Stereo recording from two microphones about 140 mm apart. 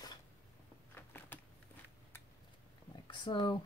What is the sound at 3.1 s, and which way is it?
Speech, 35° left (ahead or behind).